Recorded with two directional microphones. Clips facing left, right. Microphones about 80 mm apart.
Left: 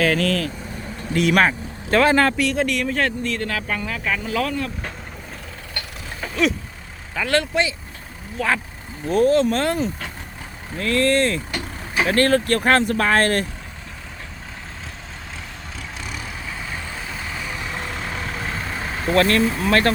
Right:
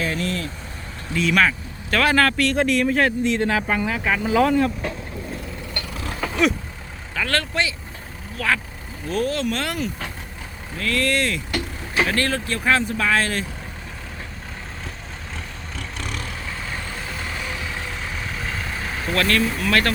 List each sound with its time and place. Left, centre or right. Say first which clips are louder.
0.0 s speech: left 6 dB; left
1.1 s speech: left 2 dB; left
1.5 s speech: left 2 dB; left
2.3 s speech: right 1 dB; centre; by 4.7 s right
7.2 s speech: left 3 dB; centre
9.0 s speech: left 7 dB; left
12.5 s speech: left 4 dB; left
13.0 s speech: left 3 dB; left
16.0 s vehicle: right 2 dB; centre
19.1 s speech: left 4 dB; left